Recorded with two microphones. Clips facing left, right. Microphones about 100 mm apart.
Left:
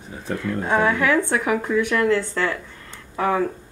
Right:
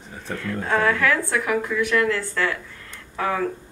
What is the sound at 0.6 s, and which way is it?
A woman's voice, 20° left (ahead or behind).